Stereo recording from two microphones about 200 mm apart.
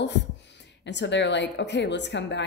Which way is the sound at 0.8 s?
60° left (ahead or behind).